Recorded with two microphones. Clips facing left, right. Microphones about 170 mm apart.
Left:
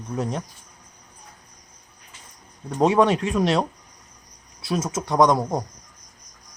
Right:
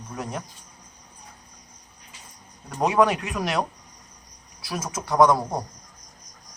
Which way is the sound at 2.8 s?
25° left (ahead or behind).